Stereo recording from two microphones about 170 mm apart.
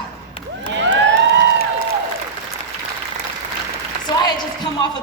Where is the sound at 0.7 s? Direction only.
90° right.